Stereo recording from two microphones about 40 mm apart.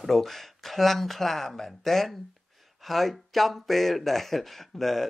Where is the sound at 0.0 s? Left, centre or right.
Centre.